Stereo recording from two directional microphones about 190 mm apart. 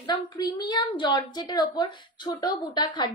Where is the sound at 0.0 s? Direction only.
20° left (ahead or behind).